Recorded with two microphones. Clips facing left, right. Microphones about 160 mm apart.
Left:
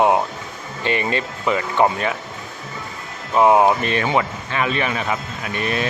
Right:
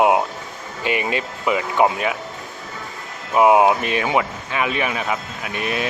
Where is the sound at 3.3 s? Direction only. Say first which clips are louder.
Even; 10° right (ahead or behind).